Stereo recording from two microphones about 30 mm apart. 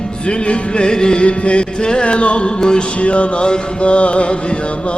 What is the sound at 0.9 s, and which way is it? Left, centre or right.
Music, left.